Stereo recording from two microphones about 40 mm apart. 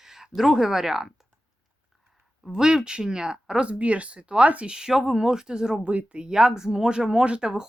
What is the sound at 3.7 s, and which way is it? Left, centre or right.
Speech, right.